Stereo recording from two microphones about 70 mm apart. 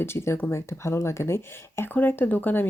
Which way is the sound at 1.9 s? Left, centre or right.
Left.